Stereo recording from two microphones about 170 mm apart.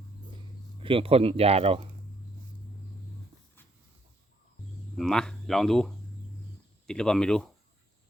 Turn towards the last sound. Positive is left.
turn(degrees=5)  # may be behind; listen again after turning